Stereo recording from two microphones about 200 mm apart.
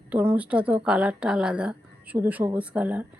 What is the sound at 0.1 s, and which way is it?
A woman's voice, 10° right (ahead or behind).